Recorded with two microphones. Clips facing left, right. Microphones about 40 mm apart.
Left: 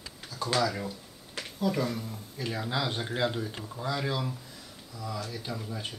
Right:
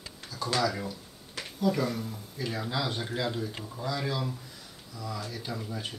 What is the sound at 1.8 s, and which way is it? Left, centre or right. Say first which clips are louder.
Speech: right 1 dB; centre.